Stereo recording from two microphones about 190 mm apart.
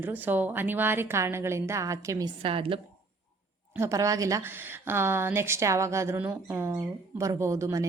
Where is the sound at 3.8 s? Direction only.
15° right (ahead or behind).